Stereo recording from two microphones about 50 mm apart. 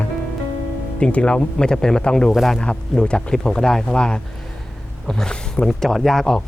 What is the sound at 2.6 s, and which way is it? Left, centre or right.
Speech, left.